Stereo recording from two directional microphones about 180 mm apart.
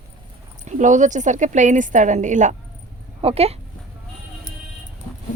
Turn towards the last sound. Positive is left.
turn(degrees=-35)  # may be behind; listen again after turning